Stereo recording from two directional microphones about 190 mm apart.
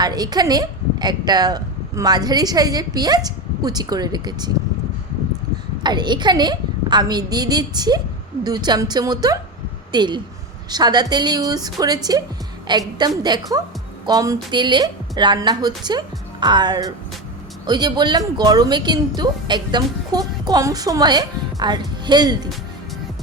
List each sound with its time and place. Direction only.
0.0 s speech: 20° right (ahead or behind)
5.8 s speech: 25° right (ahead or behind)
13.0 s speech: 20° right (ahead or behind)